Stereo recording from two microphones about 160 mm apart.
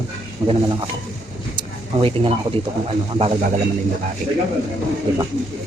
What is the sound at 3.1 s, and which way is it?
Speech, 40° right (ahead or behind).